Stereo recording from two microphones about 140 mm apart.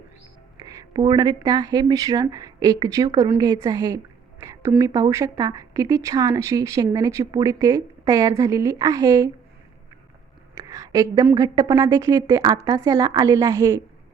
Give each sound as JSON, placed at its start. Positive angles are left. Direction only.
{"t": 0.8, "sound": "speech", "side_deg": -30}
{"t": 10.5, "sound": "a sound", "side_deg": -25}
{"t": 11.3, "sound": "speech", "side_deg": -30}